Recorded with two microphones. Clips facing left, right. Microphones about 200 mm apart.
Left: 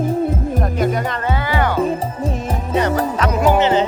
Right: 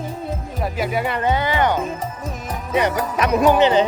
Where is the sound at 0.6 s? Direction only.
5° right (ahead or behind).